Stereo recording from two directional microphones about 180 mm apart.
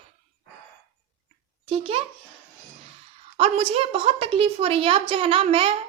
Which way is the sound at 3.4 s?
35° right (ahead or behind).